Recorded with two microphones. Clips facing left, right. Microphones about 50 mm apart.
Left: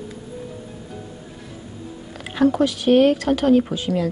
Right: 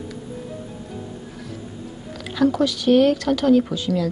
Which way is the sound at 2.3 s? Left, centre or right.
Left.